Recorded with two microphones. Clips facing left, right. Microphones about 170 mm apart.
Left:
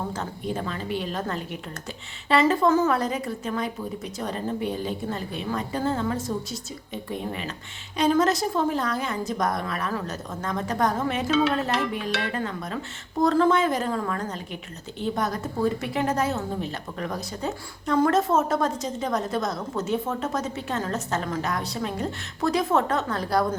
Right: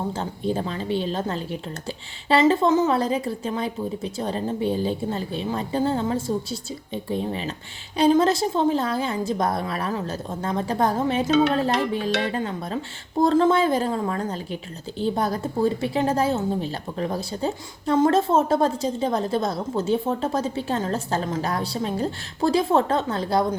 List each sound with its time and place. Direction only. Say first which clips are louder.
0.1 s a woman's voice: right 4 dB; 30° right (ahead or behind)